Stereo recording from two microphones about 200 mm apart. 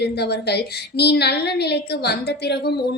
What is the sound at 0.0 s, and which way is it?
A woman's voice, 55° left (ahead or behind).